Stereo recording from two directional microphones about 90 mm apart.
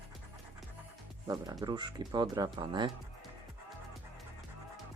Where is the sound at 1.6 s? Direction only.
50° right (ahead or behind).